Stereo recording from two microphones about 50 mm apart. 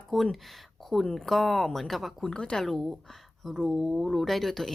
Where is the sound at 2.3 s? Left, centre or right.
Centre.